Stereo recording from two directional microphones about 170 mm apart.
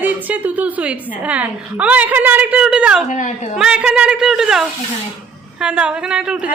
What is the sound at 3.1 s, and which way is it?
Speech, 45° left (ahead or behind).